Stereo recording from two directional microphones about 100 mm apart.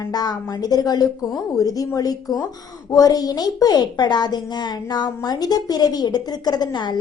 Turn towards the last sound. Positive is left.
turn(degrees=45)  # may be behind; listen again after turning